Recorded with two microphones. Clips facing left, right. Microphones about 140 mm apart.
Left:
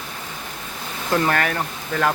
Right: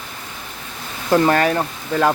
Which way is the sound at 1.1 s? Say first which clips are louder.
Right 6 dB; 25° right (ahead or behind).